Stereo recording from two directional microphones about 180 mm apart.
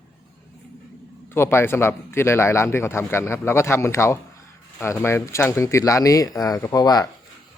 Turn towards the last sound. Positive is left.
turn(degrees=20)  # may be behind; listen again after turning